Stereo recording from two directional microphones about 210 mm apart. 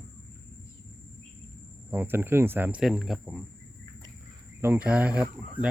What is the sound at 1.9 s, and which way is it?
Speech, 10° right (ahead or behind).